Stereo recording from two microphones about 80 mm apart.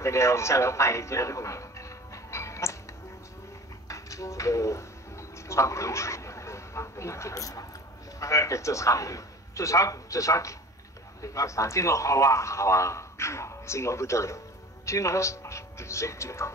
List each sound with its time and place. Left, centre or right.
0.0 s a man's voice: left
2.3 s music: left
3.9 s a sound: left
8.2 s a man's voice: left